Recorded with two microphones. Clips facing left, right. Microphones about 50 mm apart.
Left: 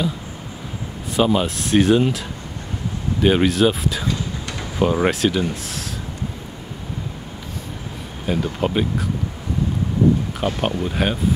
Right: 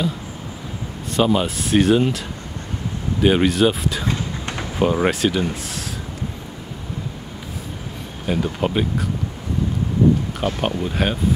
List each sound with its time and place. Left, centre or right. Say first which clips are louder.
1.1 s speech: even; centre
4.1 s vehicle: right 1 dB; right
4.7 s speech: even; centre
8.3 s speech: even; centre
10.4 s speech: left 1 dB; centre